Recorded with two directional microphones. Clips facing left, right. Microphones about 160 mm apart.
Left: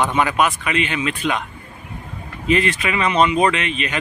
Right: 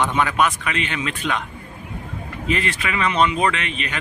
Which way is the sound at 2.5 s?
20° left (ahead or behind).